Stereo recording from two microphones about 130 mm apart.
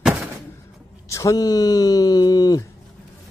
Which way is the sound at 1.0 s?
25° left (ahead or behind).